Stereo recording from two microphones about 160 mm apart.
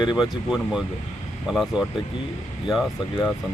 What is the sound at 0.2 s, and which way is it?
Speech, 5° right (ahead or behind).